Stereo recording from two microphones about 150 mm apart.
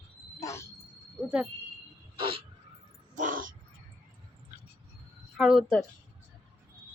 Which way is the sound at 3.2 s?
65° right (ahead or behind).